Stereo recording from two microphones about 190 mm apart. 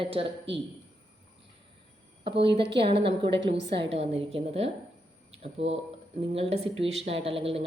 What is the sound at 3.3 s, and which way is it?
Speech, 70° right (ahead or behind).